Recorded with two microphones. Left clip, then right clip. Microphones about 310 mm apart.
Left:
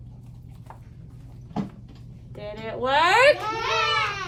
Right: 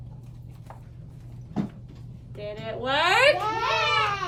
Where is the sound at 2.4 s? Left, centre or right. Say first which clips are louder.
Left 3 dB; centre.